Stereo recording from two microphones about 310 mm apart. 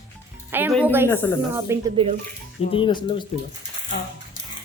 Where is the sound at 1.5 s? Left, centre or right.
Centre.